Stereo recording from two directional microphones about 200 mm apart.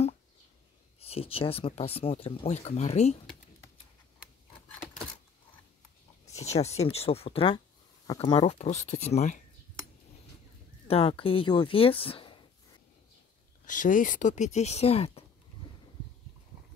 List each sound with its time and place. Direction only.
0.9 s speech: 30° left (ahead or behind)
6.2 s speech: 35° left (ahead or behind)
8.5 s speech: 35° left (ahead or behind)
10.9 s speech: 30° left (ahead or behind)
13.7 s speech: 40° left (ahead or behind)